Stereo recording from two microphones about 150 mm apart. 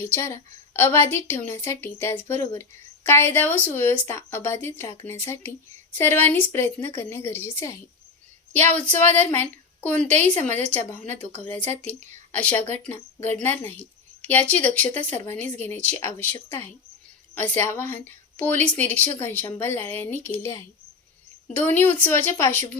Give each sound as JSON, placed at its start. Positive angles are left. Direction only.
{"t": 0.0, "sound": "a woman's voice", "side_deg": 15}
{"t": 8.9, "sound": "a woman's voice", "side_deg": 10}
{"t": 17.3, "sound": "a woman's voice", "side_deg": 10}
{"t": 21.6, "sound": "a woman's voice", "side_deg": 15}